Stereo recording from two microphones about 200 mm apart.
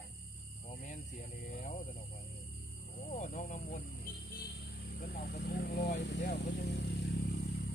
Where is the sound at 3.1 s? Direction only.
35° left (ahead or behind); by 7.5 s 55° left (ahead or behind).